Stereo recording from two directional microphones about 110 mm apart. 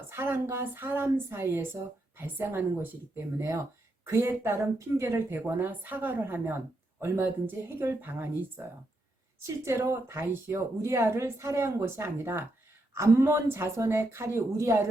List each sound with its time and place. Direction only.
0.1 s speech: 20° right (ahead or behind)
9.6 s speech: 25° right (ahead or behind)